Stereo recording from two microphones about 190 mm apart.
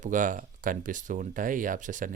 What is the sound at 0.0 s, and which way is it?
Speech, 45° right (ahead or behind).